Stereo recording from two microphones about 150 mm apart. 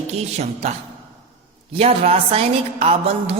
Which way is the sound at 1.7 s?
40° right (ahead or behind).